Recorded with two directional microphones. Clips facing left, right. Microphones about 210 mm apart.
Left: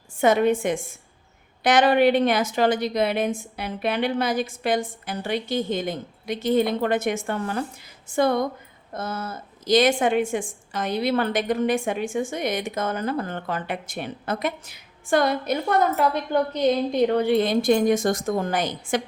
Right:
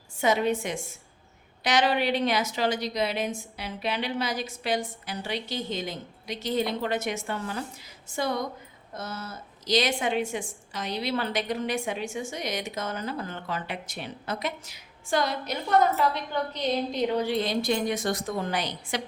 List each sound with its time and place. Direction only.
0.2 s a woman's voice: 55° left (ahead or behind)